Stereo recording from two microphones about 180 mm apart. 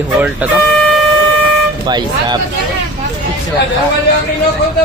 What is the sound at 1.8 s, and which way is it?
Speech, 25° right (ahead or behind).